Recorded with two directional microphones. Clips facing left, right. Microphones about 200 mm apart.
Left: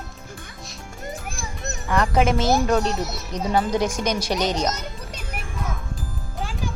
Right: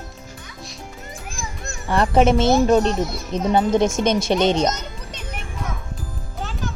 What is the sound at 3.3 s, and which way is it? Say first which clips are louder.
Speech: right 4 dB; 20° right (ahead or behind).